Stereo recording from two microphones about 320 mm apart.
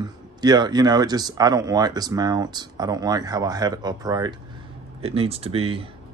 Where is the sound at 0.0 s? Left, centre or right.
Centre.